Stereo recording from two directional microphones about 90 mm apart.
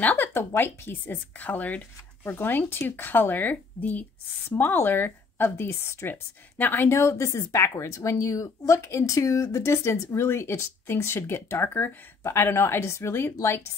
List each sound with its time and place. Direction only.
0.0 s a woman's voice: 20° left (ahead or behind)